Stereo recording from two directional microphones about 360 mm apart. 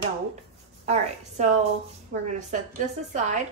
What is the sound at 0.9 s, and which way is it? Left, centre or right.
Speech, centre.